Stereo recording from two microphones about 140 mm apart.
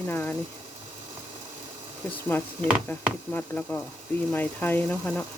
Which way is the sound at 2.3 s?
15° left (ahead or behind).